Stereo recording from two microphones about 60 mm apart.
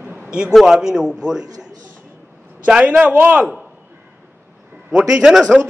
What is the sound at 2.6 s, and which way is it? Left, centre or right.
Speech, right.